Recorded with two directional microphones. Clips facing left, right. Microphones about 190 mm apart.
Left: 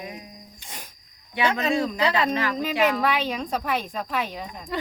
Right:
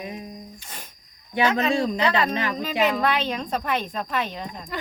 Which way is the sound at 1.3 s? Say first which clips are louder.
Right 2 dB; 35° right (ahead or behind).